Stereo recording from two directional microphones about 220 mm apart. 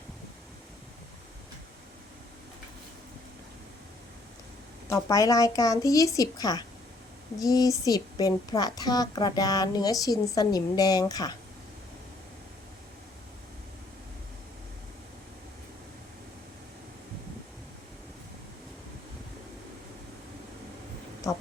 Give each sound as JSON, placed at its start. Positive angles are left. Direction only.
{"t": 4.9, "sound": "a woman's voice", "side_deg": 15}